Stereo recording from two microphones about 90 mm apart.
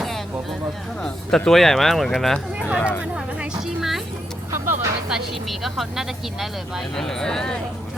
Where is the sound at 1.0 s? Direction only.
5° left (ahead or behind).